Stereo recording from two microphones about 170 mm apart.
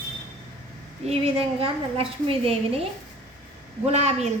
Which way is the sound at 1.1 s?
35° right (ahead or behind).